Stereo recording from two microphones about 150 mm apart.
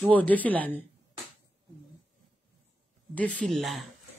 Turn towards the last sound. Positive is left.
turn(degrees=0)  # may be behind; listen again after turning